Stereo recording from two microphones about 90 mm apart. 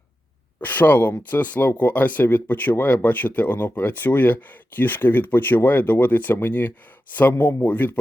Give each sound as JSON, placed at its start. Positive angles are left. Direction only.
{"t": 0.6, "sound": "speech", "side_deg": 20}